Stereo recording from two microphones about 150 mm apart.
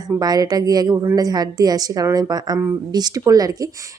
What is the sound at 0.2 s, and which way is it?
A woman's voice, 25° right (ahead or behind).